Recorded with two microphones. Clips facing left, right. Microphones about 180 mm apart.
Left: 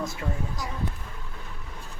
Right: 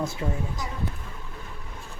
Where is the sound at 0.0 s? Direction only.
30° right (ahead or behind).